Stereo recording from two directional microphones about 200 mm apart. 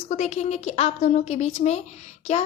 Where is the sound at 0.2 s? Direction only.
35° left (ahead or behind).